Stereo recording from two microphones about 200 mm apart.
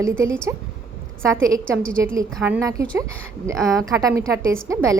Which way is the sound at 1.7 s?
5° left (ahead or behind).